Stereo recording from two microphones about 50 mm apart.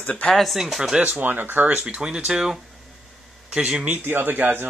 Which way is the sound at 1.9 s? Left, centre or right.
Centre.